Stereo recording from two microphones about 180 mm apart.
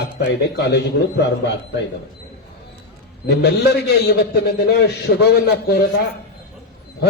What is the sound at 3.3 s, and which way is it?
A man's voice, 65° left (ahead or behind).